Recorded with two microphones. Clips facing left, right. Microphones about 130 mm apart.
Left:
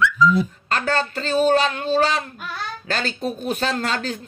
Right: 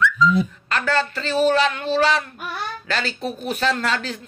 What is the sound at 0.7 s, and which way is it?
Speech, 40° left (ahead or behind).